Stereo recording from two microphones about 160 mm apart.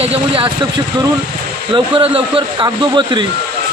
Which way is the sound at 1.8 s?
35° right (ahead or behind).